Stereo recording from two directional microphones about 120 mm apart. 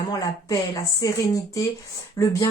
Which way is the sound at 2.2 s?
30° left (ahead or behind).